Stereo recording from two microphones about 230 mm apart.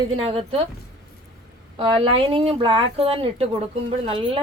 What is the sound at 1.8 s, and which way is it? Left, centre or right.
A woman's voice, right.